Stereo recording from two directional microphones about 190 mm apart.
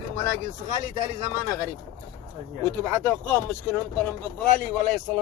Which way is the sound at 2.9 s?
10° left (ahead or behind).